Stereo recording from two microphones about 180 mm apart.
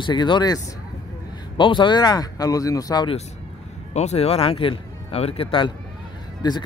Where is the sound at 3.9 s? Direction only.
35° left (ahead or behind).